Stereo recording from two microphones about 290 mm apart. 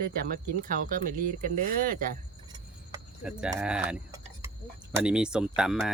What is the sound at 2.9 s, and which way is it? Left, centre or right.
Speech, centre.